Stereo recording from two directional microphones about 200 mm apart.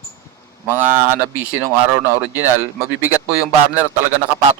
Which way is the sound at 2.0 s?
15° left (ahead or behind).